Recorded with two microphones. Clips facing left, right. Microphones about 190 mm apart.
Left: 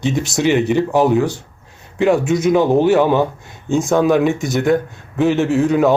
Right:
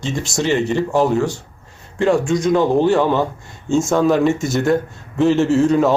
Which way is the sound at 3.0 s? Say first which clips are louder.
Left 3 dB; 20° left (ahead or behind).